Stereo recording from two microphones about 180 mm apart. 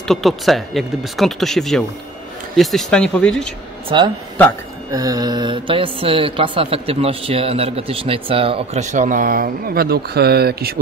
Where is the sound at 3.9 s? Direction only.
25° right (ahead or behind).